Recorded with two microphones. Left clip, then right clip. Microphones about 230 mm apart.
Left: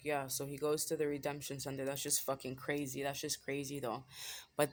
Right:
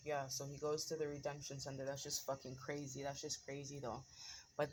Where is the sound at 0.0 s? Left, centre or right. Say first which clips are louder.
Left 5 dB; left.